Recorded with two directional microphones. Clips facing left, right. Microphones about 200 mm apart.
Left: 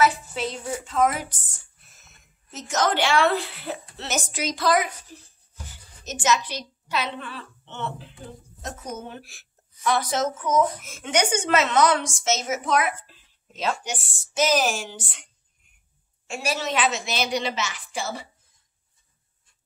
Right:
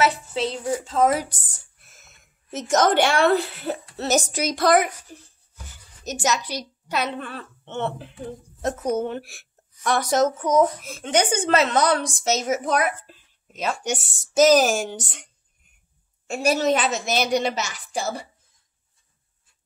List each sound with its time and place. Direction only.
0.0 s a woman's voice: 30° right (ahead or behind)
2.7 s a woman's voice: 50° right (ahead or behind)
4.6 s a woman's voice: 60° right (ahead or behind)
6.0 s a woman's voice: 40° right (ahead or behind)
8.6 s a woman's voice: 65° right (ahead or behind)
9.8 s a woman's voice: 45° right (ahead or behind)
16.3 s a woman's voice: 45° right (ahead or behind)